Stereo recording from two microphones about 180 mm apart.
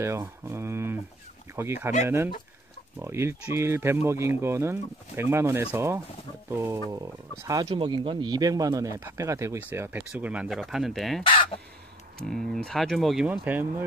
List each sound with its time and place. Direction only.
0.0 s speech: 15° right (ahead or behind); by 11.2 s centre (ahead or behind)
11.2 s speech: 30° left (ahead or behind)
12.2 s speech: 5° left (ahead or behind)